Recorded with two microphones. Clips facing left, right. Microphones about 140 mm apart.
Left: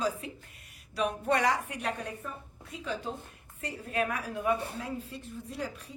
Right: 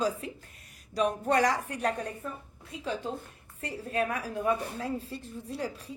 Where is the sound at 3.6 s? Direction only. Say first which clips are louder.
Right 1 dB; 30° right (ahead or behind).